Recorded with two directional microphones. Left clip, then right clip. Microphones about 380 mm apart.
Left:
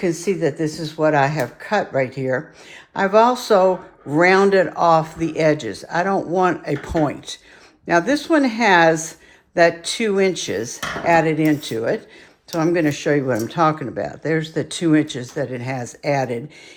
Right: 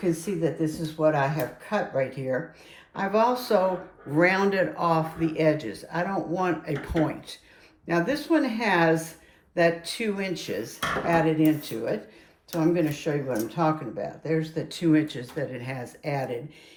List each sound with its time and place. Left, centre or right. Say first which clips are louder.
0.0 s speech: left 7 dB; left